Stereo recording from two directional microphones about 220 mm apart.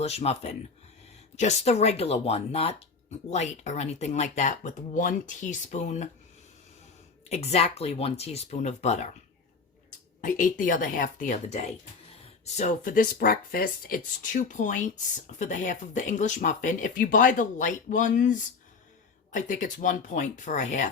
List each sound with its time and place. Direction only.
0.0 s speech: 30° left (ahead or behind)
7.3 s speech: 30° left (ahead or behind)
10.2 s speech: 35° left (ahead or behind)